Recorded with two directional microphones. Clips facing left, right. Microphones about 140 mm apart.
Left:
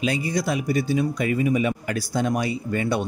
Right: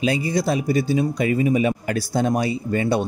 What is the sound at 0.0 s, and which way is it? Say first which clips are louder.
A man's voice: right 3 dB; 30° right (ahead or behind).